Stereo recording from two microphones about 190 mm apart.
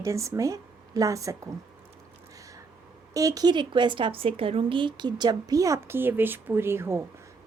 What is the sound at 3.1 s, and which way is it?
A woman's voice, 20° right (ahead or behind).